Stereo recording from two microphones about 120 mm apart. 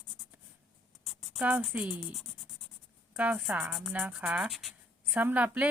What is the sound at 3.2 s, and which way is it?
A woman's voice, 10° right (ahead or behind).